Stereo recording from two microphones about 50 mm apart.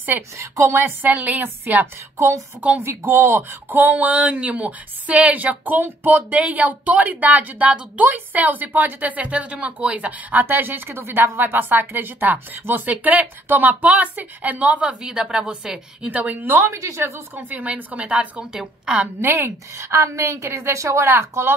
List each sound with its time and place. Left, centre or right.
0.4 s speech: right
1.0 s a woman's voice: right
2.1 s speech: right
3.1 s a woman's voice: right
10.4 s a woman's voice: right
15.0 s a woman's voice: centre
16.1 s a woman's voice: right
16.3 s a woman's voice: right
16.6 s speech: right
17.4 s a woman's voice: right
19.2 s a woman's voice: right
20.2 s speech: right